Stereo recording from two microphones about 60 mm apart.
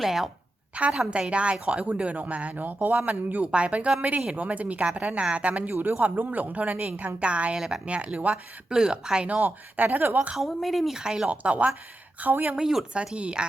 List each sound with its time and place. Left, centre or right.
0.0 s speech: centre
0.8 s a woman's voice: centre
8.7 s speech: centre
9.4 s speech: right
10.3 s speech: centre
11.3 s a woman's voice: right
12.5 s a woman's voice: centre